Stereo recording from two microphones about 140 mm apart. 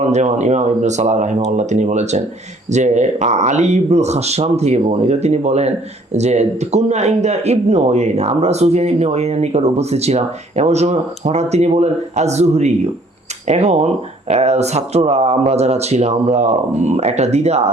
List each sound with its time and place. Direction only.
0.1 s speech: 55° right (ahead or behind)